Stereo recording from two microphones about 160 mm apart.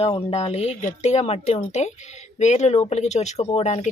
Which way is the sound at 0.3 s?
40° left (ahead or behind).